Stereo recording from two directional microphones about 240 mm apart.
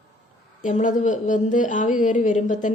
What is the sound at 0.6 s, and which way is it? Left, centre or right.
A woman's voice, left.